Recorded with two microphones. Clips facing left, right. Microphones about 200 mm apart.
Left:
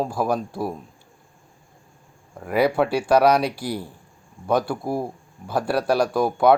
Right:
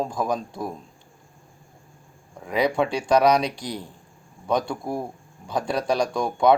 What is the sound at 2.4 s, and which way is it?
Speech, 5° left (ahead or behind).